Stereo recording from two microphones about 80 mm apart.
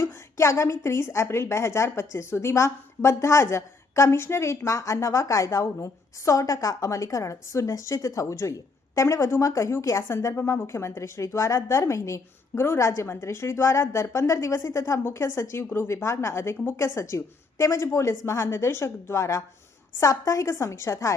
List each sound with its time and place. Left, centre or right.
0.0 s a woman's voice: left